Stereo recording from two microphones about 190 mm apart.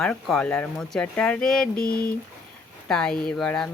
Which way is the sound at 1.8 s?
50° left (ahead or behind).